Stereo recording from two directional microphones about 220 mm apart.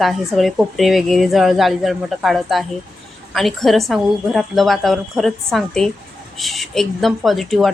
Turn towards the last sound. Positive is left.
turn(degrees=0)  # may be behind; listen again after turning